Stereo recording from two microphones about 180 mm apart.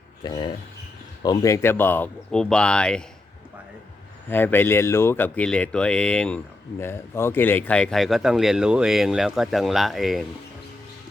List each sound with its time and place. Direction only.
0.2 s speech: 25° left (ahead or behind); by 3.0 s 5° left (ahead or behind)
4.3 s speech: 10° left (ahead or behind)